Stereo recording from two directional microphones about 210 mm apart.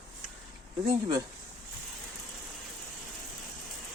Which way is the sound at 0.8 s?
20° right (ahead or behind).